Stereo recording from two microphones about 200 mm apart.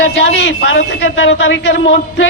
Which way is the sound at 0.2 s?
65° left (ahead or behind).